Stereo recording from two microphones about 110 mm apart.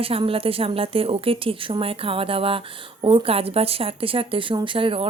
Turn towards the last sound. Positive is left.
turn(degrees=-55)  # may be behind; listen again after turning